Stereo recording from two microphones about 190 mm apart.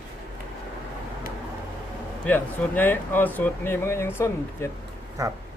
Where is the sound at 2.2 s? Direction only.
10° left (ahead or behind).